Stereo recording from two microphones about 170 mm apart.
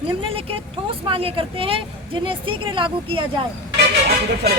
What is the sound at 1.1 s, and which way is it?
Speech, 35° right (ahead or behind).